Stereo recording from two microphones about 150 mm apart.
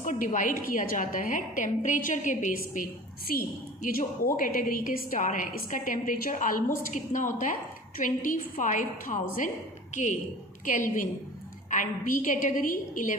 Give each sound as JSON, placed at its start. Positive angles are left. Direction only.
{"t": 0.0, "sound": "a woman's voice", "side_deg": 55}
{"t": 2.7, "sound": "a woman's voice", "side_deg": 75}